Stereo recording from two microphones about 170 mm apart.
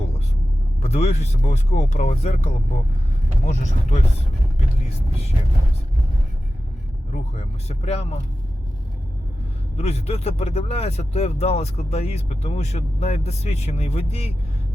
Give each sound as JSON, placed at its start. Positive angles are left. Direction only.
{"t": 0.8, "sound": "speech", "side_deg": 40}
{"t": 7.1, "sound": "speech", "side_deg": 40}
{"t": 9.7, "sound": "speech", "side_deg": 40}